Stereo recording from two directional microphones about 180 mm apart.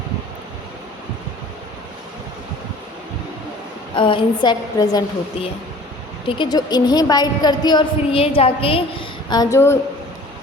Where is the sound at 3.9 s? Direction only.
25° left (ahead or behind).